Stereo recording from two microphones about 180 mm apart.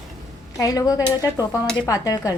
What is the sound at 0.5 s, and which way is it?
Speech, 20° left (ahead or behind).